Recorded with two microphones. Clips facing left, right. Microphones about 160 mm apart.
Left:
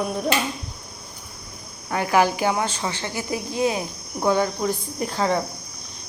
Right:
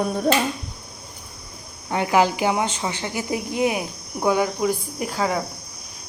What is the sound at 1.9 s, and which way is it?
A woman's voice, 20° right (ahead or behind).